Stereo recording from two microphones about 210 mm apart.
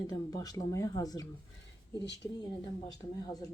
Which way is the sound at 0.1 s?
15° left (ahead or behind).